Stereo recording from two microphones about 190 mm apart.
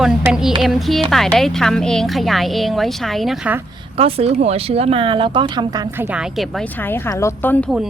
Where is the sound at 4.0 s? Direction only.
30° right (ahead or behind).